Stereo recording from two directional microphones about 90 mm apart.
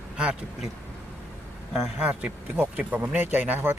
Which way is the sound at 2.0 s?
15° right (ahead or behind).